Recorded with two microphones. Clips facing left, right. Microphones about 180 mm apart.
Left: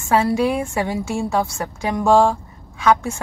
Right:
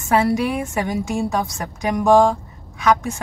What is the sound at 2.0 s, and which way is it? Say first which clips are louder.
Speech: right 1 dB; 15° right (ahead or behind).